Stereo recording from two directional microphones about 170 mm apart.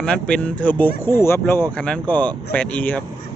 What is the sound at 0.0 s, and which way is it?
Speech, 5° left (ahead or behind).